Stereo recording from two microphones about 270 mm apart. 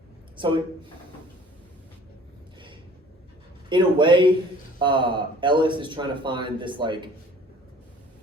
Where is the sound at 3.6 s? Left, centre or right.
Centre.